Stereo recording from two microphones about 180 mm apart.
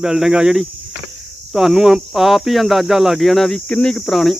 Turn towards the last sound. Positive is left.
turn(degrees=0)  # may be behind; listen again after turning